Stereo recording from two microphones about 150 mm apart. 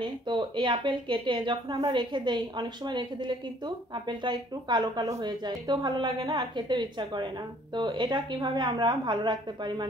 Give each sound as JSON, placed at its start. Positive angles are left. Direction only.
{"t": 0.0, "sound": "a woman's voice", "side_deg": -30}